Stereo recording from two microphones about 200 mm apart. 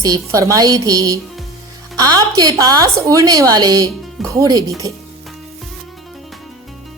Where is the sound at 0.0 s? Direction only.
15° right (ahead or behind).